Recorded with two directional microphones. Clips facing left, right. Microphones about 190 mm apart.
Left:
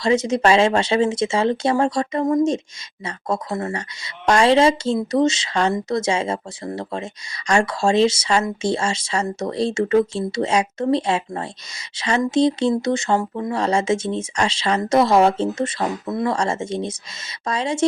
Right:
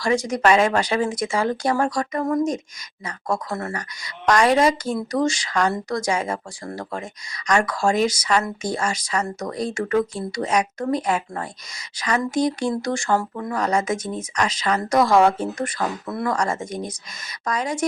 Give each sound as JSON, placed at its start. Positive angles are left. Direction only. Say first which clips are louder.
{"t": 0.0, "sound": "speech", "louder": "left 2 dB", "side_deg": 25}